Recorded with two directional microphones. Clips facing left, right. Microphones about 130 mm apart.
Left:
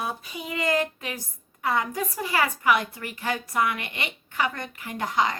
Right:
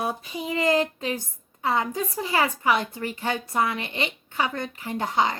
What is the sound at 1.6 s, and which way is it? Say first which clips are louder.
A woman's voice: right 1 dB; 25° right (ahead or behind).